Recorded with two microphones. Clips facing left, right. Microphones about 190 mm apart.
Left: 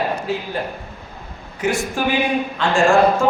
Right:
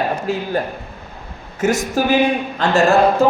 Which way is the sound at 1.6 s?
40° right (ahead or behind).